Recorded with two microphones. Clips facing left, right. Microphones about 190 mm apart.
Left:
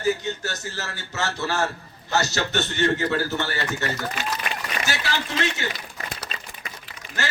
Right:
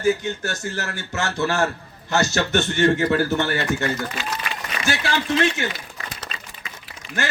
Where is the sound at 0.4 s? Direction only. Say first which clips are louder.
Right 4 dB; 55° right (ahead or behind).